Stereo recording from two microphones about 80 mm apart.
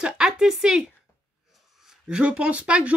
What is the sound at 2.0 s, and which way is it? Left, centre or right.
Speech, centre.